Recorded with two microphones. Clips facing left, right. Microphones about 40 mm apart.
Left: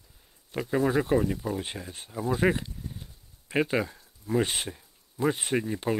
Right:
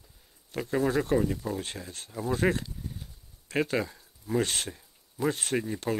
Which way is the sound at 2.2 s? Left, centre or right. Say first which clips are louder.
Left 2 dB; centre.